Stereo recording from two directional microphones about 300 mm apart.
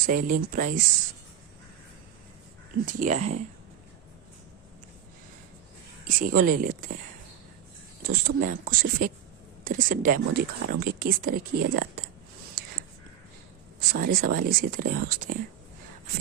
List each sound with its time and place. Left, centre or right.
0.0 s speech: right
2.8 s speech: right
6.1 s speech: right
8.1 s speech: right
13.9 s speech: right